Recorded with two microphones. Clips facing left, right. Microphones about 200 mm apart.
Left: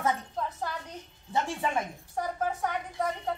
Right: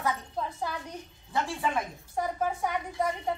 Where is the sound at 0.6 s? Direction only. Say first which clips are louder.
Right 1 dB; 10° right (ahead or behind).